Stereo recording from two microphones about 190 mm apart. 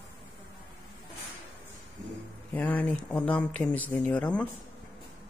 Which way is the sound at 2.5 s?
10° left (ahead or behind).